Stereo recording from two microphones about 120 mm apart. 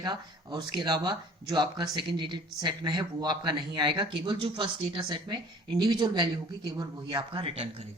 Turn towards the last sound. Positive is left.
turn(degrees=-50)  # may be behind; listen again after turning